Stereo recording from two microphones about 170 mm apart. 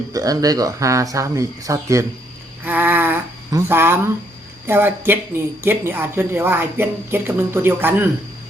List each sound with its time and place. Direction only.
0.1 s speech: 20° right (ahead or behind)
2.6 s a sound: 10° right (ahead or behind)
4.6 s speech: 15° right (ahead or behind)